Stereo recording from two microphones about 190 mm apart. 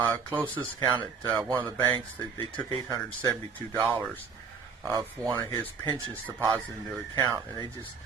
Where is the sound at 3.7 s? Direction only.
15° right (ahead or behind).